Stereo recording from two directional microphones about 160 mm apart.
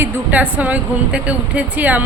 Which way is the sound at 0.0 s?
10° right (ahead or behind).